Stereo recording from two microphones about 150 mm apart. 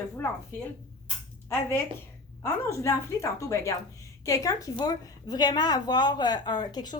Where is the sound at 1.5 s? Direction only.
15° left (ahead or behind).